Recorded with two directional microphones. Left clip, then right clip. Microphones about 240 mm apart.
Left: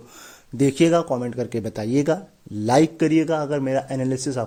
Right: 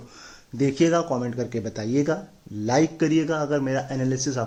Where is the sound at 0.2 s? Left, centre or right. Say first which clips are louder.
Left 4 dB; left.